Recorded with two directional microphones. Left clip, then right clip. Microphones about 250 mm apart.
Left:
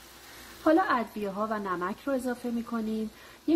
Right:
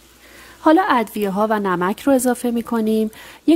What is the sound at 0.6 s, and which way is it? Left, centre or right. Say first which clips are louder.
Speech: right 10 dB; right.